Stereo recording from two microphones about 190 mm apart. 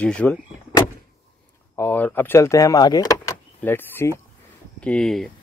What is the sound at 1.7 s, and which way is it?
Speech, 10° left (ahead or behind).